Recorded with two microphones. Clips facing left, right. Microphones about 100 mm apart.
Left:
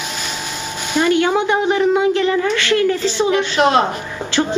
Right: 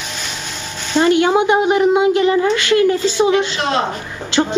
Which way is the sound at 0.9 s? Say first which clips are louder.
Right 2 dB; 20° right (ahead or behind).